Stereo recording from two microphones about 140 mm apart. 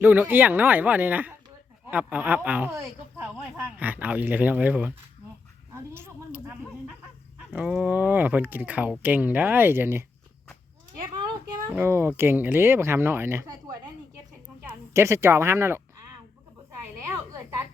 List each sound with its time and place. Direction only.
0.0 s speech: 10° right (ahead or behind)
5.7 s a sound: 15° right (ahead or behind)
7.5 s speech: 10° right (ahead or behind)
11.1 s a sound: 35° right (ahead or behind)
11.7 s speech: 15° right (ahead or behind)
14.7 s a woman's voice: 20° right (ahead or behind)